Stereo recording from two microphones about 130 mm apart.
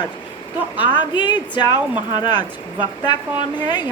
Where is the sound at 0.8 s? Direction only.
35° left (ahead or behind).